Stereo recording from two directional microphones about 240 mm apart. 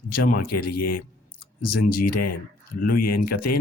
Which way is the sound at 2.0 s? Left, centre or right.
Left.